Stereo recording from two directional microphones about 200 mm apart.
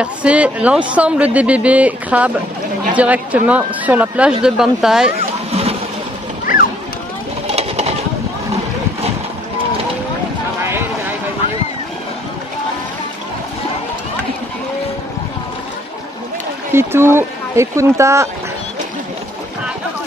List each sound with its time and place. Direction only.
0.0 s speech: 5° right (ahead or behind)
5.5 s a sound: 30° right (ahead or behind)
7.5 s bird: 30° right (ahead or behind)
16.7 s speech: 10° right (ahead or behind)